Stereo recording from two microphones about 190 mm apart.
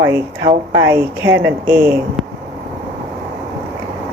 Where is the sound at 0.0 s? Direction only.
15° right (ahead or behind).